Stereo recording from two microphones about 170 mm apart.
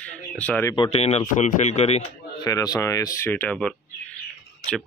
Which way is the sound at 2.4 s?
20° left (ahead or behind).